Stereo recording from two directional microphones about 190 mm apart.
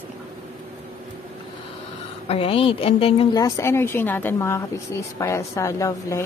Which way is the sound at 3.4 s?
15° left (ahead or behind).